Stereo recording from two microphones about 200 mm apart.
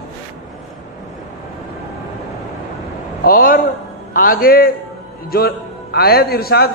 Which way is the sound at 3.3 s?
45° left (ahead or behind).